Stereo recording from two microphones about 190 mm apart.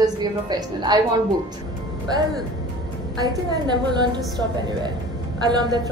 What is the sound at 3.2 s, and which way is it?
Speech, 20° right (ahead or behind).